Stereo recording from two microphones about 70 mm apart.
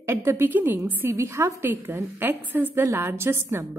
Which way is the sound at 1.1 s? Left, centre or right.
Right.